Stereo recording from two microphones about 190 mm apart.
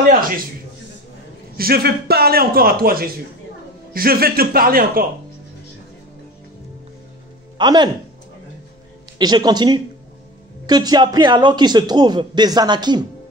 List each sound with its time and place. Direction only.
0.1 s a man's voice: 50° right (ahead or behind)
1.6 s a man's voice: 55° right (ahead or behind)
7.5 s speech: 25° right (ahead or behind)
9.2 s a man's voice: 20° right (ahead or behind)